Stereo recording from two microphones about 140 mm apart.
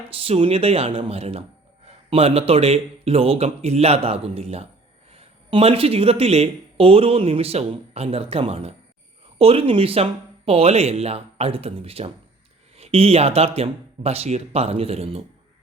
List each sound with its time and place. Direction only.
0.1 s speech: 40° right (ahead or behind)